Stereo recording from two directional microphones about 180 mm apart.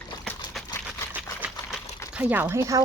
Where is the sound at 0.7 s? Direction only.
10° left (ahead or behind).